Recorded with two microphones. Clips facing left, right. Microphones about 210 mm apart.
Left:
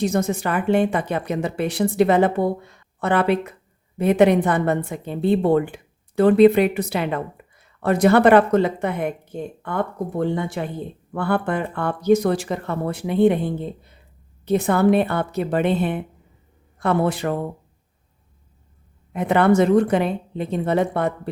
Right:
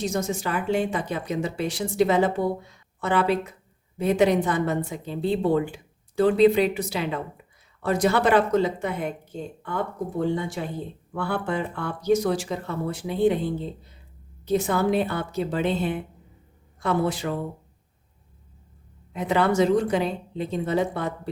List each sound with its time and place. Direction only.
0.0 s speech: 55° left (ahead or behind)
19.1 s speech: 55° left (ahead or behind)